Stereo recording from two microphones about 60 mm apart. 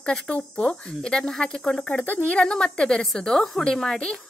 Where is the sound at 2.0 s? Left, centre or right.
Left.